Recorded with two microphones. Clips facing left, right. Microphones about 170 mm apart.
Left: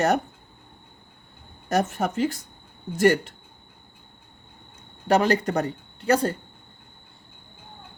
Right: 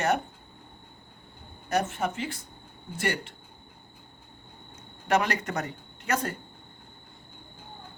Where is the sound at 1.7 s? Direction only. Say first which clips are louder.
Left 4 dB; 40° left (ahead or behind).